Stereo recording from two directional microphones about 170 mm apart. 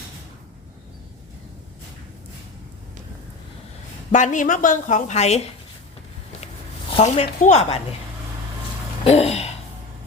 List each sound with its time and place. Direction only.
4.1 s a woman's voice: 45° left (ahead or behind)
6.9 s speech: 40° left (ahead or behind)
9.0 s a sound: 35° left (ahead or behind)